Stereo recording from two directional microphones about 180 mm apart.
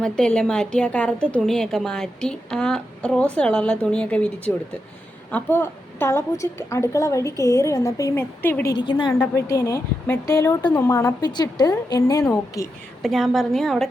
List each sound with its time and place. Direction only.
0.0 s a woman's voice: 5° left (ahead or behind)
8.7 s a woman's voice: 25° left (ahead or behind)
9.1 s a woman's voice: 10° left (ahead or behind)
13.0 s a woman's voice: centre (ahead or behind)